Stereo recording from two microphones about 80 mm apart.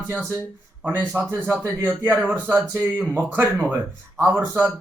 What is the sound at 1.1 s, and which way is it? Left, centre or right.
Speech, right.